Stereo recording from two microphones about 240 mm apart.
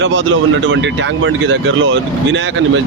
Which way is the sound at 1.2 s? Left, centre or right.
Right.